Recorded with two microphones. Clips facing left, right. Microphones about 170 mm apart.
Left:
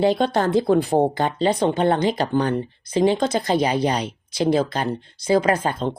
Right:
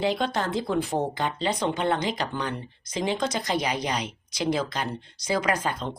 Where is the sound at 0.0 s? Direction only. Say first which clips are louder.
Left 7 dB; 35° left (ahead or behind).